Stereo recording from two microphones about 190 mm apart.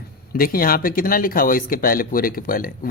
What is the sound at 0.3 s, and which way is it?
Speech, 50° left (ahead or behind).